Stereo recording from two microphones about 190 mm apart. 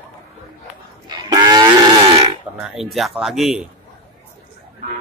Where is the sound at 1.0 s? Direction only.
20° right (ahead or behind).